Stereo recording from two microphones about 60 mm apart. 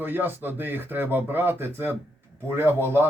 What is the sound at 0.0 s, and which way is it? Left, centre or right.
Speech, right.